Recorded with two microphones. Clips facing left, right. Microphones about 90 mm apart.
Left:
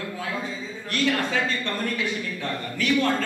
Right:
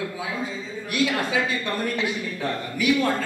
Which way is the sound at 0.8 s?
10° right (ahead or behind).